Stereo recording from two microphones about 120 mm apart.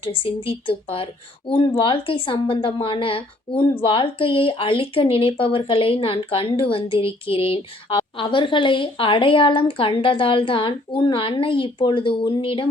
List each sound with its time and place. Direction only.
0.0 s speech: 50° left (ahead or behind)